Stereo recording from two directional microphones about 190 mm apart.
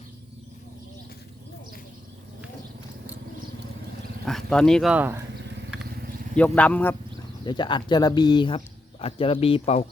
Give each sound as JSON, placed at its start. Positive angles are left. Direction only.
{"t": 4.3, "sound": "speech", "side_deg": 0}
{"t": 6.3, "sound": "speech", "side_deg": 5}
{"t": 7.4, "sound": "speech", "side_deg": 25}